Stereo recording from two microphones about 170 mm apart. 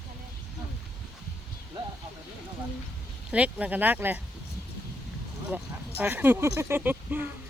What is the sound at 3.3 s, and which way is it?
Speech, 5° right (ahead or behind).